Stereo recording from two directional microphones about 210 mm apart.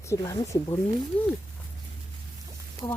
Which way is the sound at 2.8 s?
10° left (ahead or behind).